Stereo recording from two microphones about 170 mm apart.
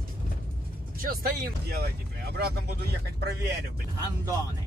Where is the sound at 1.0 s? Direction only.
60° right (ahead or behind).